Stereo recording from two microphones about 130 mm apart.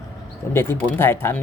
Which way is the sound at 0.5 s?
20° left (ahead or behind).